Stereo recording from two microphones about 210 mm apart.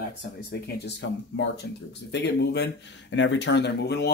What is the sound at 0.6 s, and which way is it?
Speech, 55° left (ahead or behind).